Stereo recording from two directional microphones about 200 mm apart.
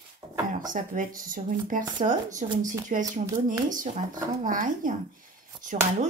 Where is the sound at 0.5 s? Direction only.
40° right (ahead or behind).